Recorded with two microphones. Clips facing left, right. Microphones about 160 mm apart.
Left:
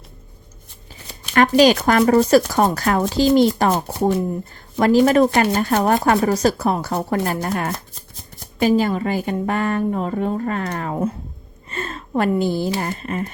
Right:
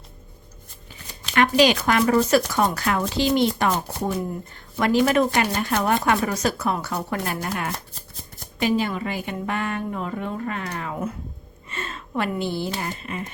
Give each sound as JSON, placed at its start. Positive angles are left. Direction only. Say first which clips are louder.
{"t": 1.3, "sound": "speech", "louder": "left 4 dB", "side_deg": 40}